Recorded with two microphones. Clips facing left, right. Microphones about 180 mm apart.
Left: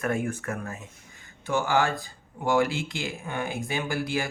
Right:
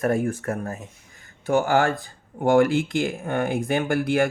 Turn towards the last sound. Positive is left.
turn(degrees=-55)  # may be behind; listen again after turning